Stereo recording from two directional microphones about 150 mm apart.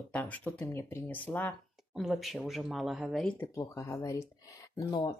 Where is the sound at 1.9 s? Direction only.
Centre (ahead or behind).